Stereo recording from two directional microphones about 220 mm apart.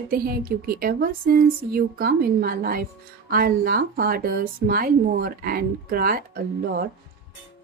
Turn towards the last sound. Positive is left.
turn(degrees=-45)  # may be behind; listen again after turning